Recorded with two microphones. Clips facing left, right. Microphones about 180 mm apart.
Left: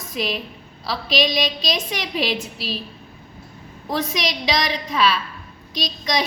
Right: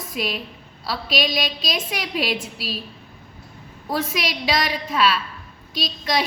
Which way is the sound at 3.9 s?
5° right (ahead or behind).